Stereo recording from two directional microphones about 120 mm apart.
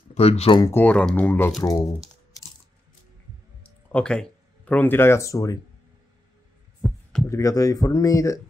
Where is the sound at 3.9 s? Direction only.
10° left (ahead or behind); by 5.5 s 25° left (ahead or behind).